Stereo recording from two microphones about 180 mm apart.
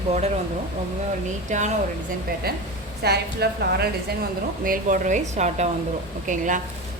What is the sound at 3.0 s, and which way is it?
Speech, 65° right (ahead or behind).